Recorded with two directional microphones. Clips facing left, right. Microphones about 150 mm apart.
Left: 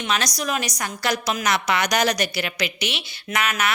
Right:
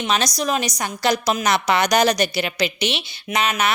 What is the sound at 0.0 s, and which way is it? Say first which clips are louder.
A woman's voice: right 4 dB; 25° right (ahead or behind).